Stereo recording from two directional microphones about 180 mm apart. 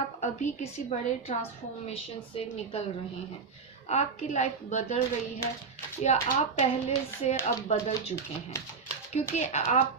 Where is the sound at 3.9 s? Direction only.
40° left (ahead or behind).